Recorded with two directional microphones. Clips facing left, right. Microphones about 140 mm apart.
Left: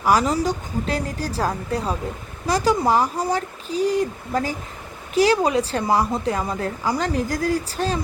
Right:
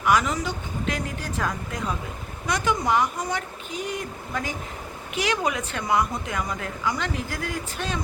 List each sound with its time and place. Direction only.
0.0 s a woman's voice: 35° left (ahead or behind)